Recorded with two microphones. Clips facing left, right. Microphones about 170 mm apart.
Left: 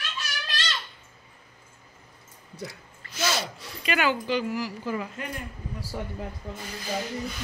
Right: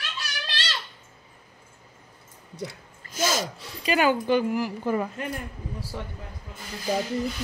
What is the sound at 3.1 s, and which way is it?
Speech, 45° right (ahead or behind).